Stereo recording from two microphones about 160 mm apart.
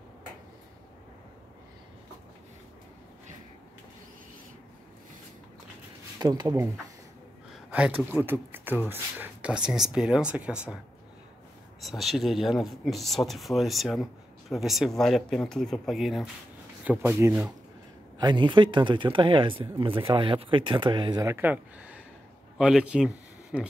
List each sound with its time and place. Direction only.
6.1 s speech: 25° right (ahead or behind)
7.5 s speech: 5° right (ahead or behind)
11.8 s speech: centre (ahead or behind)
18.2 s speech: 30° right (ahead or behind)
21.3 s speech: 10° right (ahead or behind)